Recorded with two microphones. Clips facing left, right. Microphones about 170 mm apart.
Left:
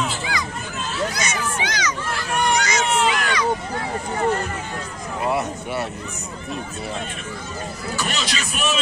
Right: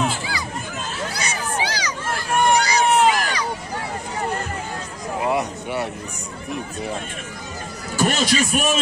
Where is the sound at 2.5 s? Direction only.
35° right (ahead or behind).